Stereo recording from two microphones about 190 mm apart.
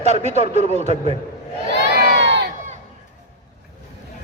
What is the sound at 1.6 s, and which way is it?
Crowd, 55° right (ahead or behind).